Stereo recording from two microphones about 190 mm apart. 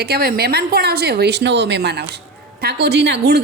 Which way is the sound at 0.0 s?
55° right (ahead or behind).